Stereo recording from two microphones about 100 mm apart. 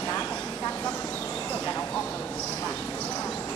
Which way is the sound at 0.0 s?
25° left (ahead or behind).